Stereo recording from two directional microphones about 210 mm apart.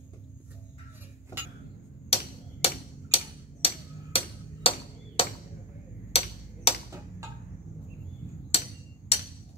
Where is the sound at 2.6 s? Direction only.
25° left (ahead or behind).